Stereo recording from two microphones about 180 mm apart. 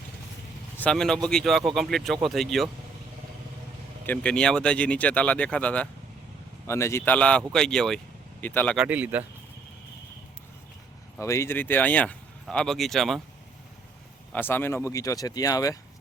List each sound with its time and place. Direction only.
0.8 s speech: 5° left (ahead or behind)
4.0 s speech: 10° left (ahead or behind)
8.7 s speech: 5° right (ahead or behind)
11.2 s speech: 15° left (ahead or behind); by 13.2 s centre (ahead or behind)
14.3 s speech: 10° left (ahead or behind)